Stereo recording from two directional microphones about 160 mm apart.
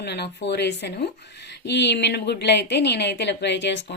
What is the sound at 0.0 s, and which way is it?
A woman's voice, 90° left.